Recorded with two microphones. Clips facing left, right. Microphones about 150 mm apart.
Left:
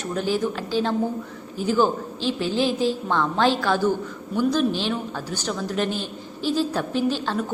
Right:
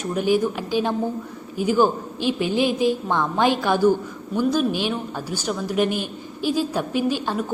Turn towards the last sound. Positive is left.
turn(degrees=-10)  # may be behind; listen again after turning